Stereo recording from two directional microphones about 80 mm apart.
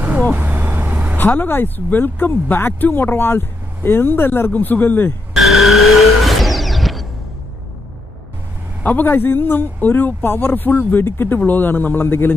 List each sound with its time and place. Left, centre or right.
0.0 s vehicle: centre
1.2 s speech: left
5.3 s vehicle: centre
8.8 s speech: left